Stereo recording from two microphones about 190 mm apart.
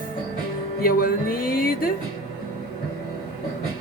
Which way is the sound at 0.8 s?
50° left (ahead or behind).